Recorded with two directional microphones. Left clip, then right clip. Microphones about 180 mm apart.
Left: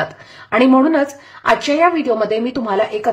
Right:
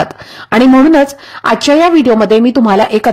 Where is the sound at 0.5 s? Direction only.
45° right (ahead or behind).